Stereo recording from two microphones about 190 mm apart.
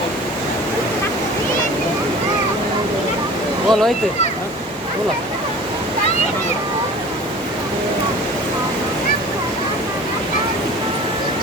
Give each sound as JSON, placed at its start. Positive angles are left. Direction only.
{"t": 3.7, "sound": "speech", "side_deg": 0}